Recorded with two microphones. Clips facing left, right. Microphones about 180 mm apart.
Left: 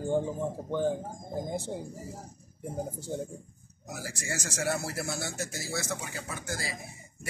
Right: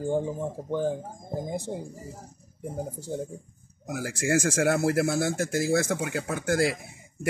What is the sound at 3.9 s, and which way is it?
Speech, 55° right (ahead or behind).